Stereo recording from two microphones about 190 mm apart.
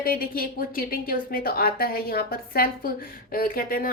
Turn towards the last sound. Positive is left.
turn(degrees=50)  # may be behind; listen again after turning